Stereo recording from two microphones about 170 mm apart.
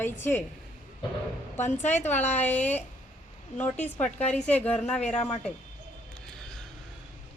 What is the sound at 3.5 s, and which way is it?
A woman's voice, 10° left (ahead or behind).